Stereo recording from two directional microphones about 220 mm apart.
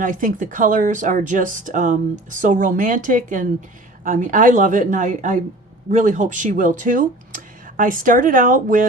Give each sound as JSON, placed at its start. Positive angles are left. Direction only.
{"t": 0.0, "sound": "speech", "side_deg": -35}